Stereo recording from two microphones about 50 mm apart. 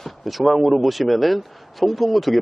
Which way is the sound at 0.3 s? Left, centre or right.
Centre.